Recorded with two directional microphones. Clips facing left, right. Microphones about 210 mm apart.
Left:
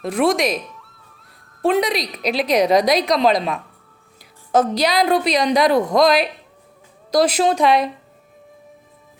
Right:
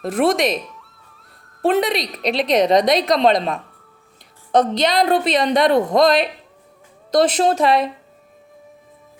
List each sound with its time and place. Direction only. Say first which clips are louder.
0.0 s a woman's voice: even; centre (ahead or behind)